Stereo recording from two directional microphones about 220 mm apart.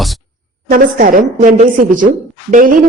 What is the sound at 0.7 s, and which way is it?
Speech, 40° right (ahead or behind).